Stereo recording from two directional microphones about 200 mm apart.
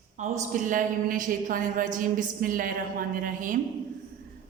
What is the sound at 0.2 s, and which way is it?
A woman's voice, 35° right (ahead or behind).